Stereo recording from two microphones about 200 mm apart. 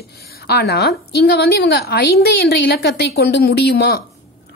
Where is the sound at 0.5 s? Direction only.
55° left (ahead or behind).